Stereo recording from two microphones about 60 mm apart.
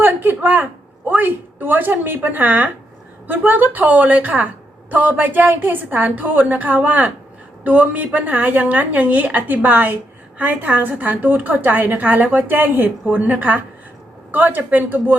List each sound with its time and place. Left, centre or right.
0.0 s a man's voice: right